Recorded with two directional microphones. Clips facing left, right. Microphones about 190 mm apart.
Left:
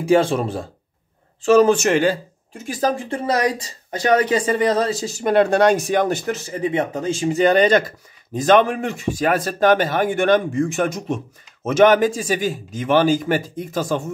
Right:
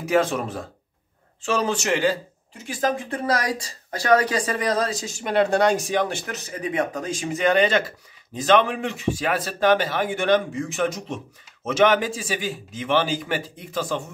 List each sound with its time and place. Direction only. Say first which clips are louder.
0.0 s speech: left 5 dB; 30° left (ahead or behind)
1.4 s speech: left 10 dB; 45° left (ahead or behind); by 5.1 s 25° left (ahead or behind)
5.1 s speech: left 4 dB; 50° left (ahead or behind); by 5.9 s 65° left (ahead or behind)
5.9 s speech: left 5 dB; 40° left (ahead or behind)
6.4 s speech: left 4 dB; 25° left (ahead or behind); by 14.0 s 45° left (ahead or behind)